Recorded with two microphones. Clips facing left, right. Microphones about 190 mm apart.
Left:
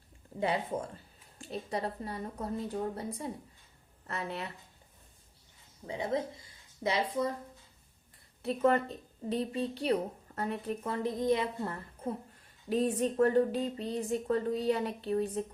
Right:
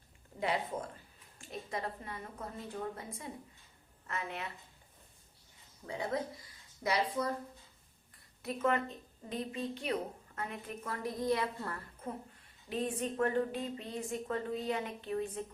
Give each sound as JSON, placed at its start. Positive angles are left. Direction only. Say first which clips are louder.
{"t": 0.3, "sound": "a woman's voice", "louder": "left 3 dB", "side_deg": 30}
{"t": 5.8, "sound": "speech", "louder": "left 3 dB", "side_deg": 20}
{"t": 8.4, "sound": "a woman's voice", "louder": "left 5 dB", "side_deg": 35}